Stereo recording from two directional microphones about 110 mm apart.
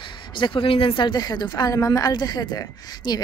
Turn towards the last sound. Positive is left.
turn(degrees=40)  # may be behind; listen again after turning